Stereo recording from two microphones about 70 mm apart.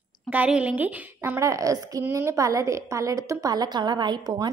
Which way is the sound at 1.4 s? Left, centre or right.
Right.